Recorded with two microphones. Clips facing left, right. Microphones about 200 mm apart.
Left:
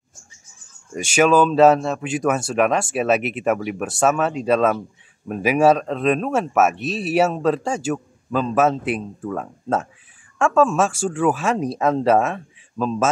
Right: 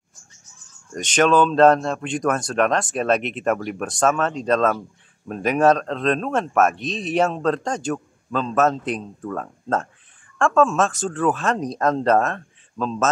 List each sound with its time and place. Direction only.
0.9 s speech: 10° left (ahead or behind)